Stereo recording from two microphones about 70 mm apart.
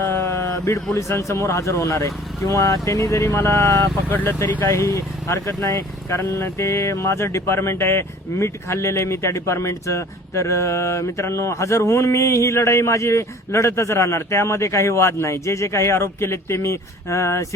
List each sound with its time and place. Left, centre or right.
0.2 s a sound: left
0.9 s speech: left
4.6 s speech: left